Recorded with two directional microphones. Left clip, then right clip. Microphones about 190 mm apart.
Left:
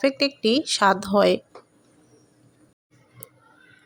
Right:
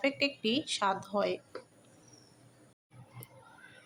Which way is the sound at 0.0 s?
30° left (ahead or behind).